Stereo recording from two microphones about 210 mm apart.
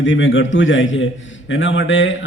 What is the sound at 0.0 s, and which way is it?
A man's voice, 65° left (ahead or behind).